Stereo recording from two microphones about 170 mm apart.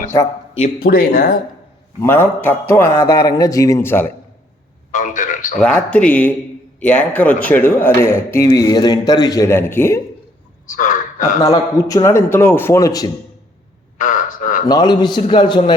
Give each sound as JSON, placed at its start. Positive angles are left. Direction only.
{"t": 0.8, "sound": "speech", "side_deg": 60}
{"t": 2.0, "sound": "a man's voice", "side_deg": 15}
{"t": 4.9, "sound": "a man's voice", "side_deg": 50}
{"t": 5.5, "sound": "a man's voice", "side_deg": 5}
{"t": 10.7, "sound": "a sound", "side_deg": 50}
{"t": 11.4, "sound": "a man's voice", "side_deg": 20}
{"t": 14.0, "sound": "a sound", "side_deg": 50}
{"t": 14.7, "sound": "a man's voice", "side_deg": 25}